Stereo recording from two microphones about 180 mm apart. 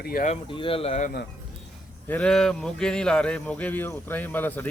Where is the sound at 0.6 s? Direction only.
30° left (ahead or behind).